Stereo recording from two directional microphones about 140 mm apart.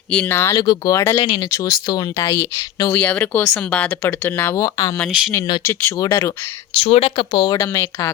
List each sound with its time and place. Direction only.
0.1 s speech: 10° left (ahead or behind)
0.5 s speech: 30° left (ahead or behind)
0.9 s speech: 20° left (ahead or behind)
4.9 s speech: 5° left (ahead or behind)
6.0 s speech: 20° left (ahead or behind)
6.7 s speech: 45° left (ahead or behind)
7.3 s speech: 30° left (ahead or behind)